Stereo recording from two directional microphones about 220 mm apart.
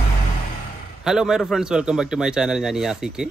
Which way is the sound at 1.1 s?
Centre (ahead or behind).